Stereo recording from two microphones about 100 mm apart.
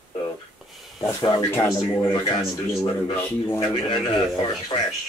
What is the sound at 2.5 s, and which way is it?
Speech, 35° left (ahead or behind).